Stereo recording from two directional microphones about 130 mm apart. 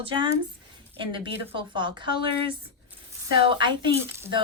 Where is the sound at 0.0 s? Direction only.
40° right (ahead or behind).